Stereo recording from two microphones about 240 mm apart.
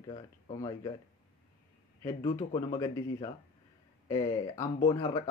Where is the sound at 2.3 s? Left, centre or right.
Centre.